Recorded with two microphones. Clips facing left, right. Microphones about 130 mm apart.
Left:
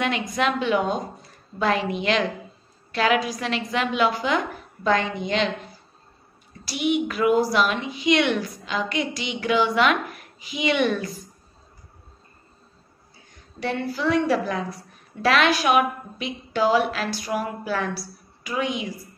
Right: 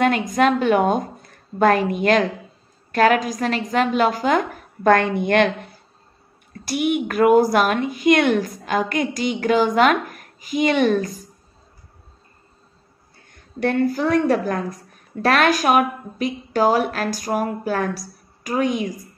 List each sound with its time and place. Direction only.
0.0 s a woman's voice: 45° right (ahead or behind)
13.1 s a woman's voice: 55° right (ahead or behind)